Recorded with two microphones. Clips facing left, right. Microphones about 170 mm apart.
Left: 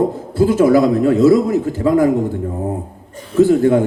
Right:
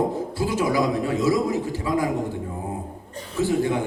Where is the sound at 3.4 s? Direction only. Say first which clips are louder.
Left 11 dB; 50° left (ahead or behind).